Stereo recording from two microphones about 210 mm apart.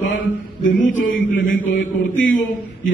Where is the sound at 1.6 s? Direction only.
60° left (ahead or behind).